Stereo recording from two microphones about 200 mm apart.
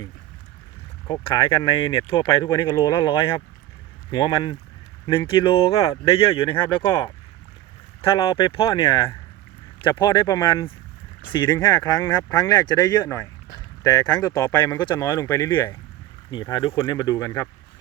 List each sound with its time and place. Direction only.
1.0 s speech: 25° left (ahead or behind)